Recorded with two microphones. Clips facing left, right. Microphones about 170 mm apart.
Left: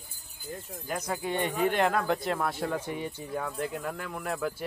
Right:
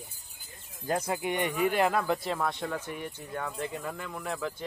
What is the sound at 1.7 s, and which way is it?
Speech, 5° right (ahead or behind).